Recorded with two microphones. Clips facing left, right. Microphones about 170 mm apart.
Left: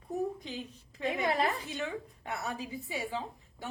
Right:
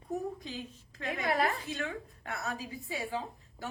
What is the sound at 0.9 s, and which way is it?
A woman's voice, 20° left (ahead or behind).